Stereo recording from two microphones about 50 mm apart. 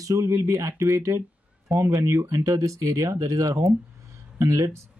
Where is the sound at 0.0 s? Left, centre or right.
Right.